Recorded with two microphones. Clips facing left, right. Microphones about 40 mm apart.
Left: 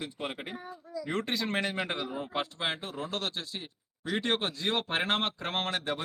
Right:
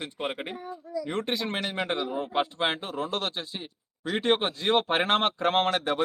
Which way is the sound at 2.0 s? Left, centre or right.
Right.